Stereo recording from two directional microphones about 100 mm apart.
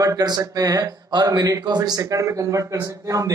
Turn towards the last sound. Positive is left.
turn(degrees=-35)  # may be behind; listen again after turning